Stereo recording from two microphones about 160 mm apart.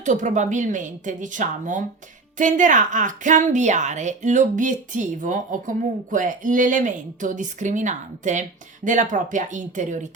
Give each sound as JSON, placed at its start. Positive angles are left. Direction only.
{"t": 0.0, "sound": "a woman's voice", "side_deg": -50}